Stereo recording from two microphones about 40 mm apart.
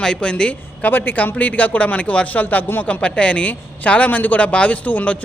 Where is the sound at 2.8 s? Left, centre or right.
Left.